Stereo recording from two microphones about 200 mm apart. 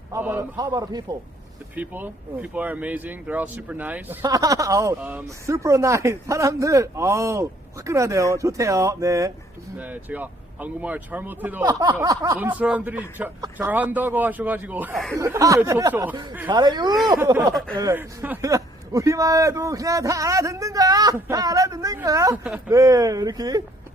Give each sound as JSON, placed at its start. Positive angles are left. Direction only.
{"t": 0.1, "sound": "speech", "side_deg": -10}
{"t": 1.7, "sound": "speech", "side_deg": -10}
{"t": 11.6, "sound": "speech", "side_deg": -20}